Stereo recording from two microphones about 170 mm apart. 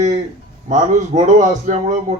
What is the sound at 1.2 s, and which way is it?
Speech, 45° right (ahead or behind).